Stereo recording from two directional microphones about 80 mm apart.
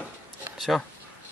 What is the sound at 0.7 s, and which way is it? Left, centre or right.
Speech, centre.